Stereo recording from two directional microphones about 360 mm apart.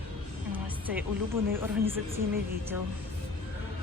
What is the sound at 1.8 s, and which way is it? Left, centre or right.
Speech, centre.